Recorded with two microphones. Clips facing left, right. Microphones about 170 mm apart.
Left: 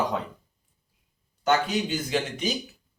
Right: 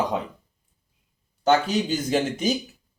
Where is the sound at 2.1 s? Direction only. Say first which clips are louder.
Right 5 dB; 40° right (ahead or behind).